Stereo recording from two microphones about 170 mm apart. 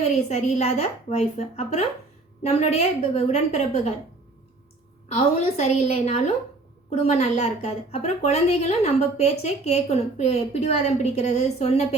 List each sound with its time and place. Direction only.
0.1 s a woman's voice: 40° left (ahead or behind)
5.0 s a woman's voice: 40° left (ahead or behind)